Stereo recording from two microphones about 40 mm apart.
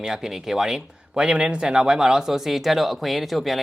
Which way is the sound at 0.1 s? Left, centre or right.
Centre.